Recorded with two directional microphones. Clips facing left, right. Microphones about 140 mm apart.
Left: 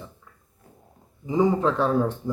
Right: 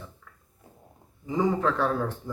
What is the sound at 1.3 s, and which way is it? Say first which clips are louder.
Speech: left 4 dB; 20° left (ahead or behind).